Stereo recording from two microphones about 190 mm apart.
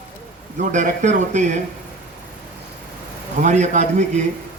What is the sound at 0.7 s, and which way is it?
Speech, 40° right (ahead or behind).